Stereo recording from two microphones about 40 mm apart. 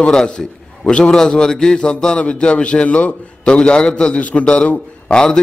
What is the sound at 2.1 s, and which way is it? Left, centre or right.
A man's voice, left.